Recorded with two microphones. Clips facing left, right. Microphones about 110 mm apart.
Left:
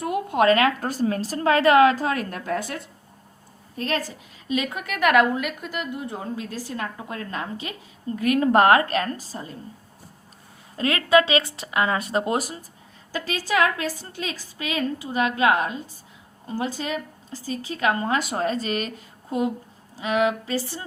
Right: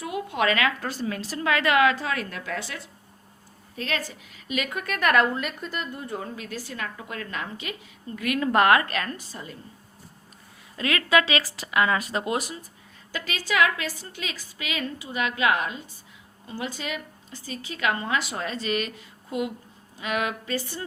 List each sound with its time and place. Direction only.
0.0 s a woman's voice: 45° left (ahead or behind)
10.8 s a woman's voice: 35° left (ahead or behind)
20.0 s a woman's voice: 25° left (ahead or behind)